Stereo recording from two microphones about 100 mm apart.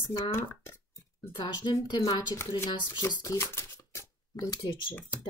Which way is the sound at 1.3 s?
45° left (ahead or behind).